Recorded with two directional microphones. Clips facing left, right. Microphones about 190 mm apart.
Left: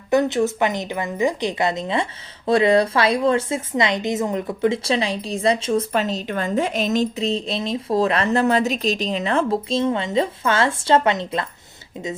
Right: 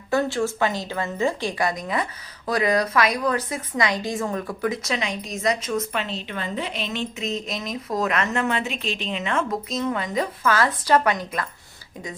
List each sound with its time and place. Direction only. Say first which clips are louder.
0.1 s a woman's voice: left 4 dB; 20° left (ahead or behind)